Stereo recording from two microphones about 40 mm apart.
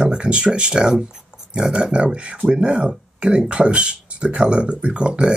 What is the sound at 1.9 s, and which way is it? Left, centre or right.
Speech, right.